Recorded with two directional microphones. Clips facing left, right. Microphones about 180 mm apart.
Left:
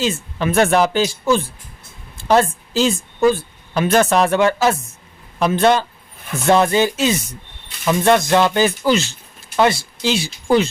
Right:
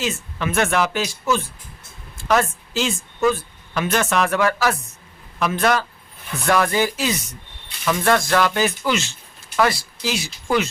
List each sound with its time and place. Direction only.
0.0 s a woman's voice: 30° left (ahead or behind)
2.2 s a woman's voice: 30° left (ahead or behind)
9.6 s speech: 25° left (ahead or behind)